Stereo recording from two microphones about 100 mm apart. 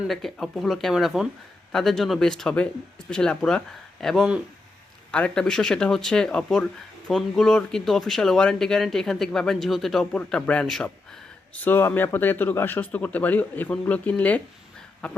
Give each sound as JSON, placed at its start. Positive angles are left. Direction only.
{"t": 0.1, "sound": "speech", "side_deg": 5}
{"t": 11.5, "sound": "speech", "side_deg": 20}